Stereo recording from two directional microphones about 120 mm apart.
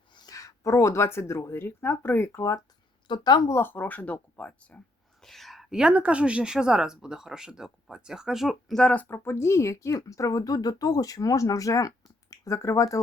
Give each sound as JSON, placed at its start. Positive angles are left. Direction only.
{"t": 0.1, "sound": "a woman's voice", "side_deg": 35}
{"t": 3.1, "sound": "a woman's voice", "side_deg": 35}
{"t": 3.5, "sound": "a woman's voice", "side_deg": 15}